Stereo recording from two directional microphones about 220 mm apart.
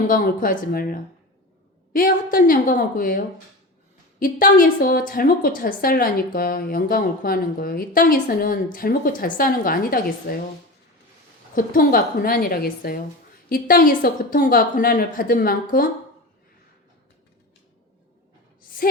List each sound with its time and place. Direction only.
0.1 s a woman's voice: 40° left (ahead or behind)
11.5 s a woman's voice: 40° left (ahead or behind)